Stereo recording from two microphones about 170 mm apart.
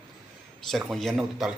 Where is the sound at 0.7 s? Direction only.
Centre (ahead or behind).